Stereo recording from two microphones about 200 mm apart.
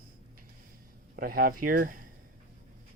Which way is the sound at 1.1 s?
45° right (ahead or behind).